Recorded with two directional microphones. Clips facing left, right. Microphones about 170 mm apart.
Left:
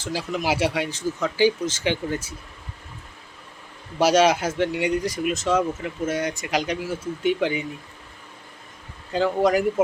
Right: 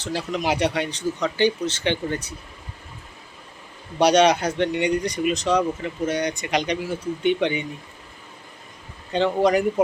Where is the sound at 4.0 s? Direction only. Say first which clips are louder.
Right 1 dB; 5° left (ahead or behind).